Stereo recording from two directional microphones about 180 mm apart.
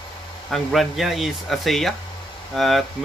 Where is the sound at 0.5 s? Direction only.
Centre (ahead or behind).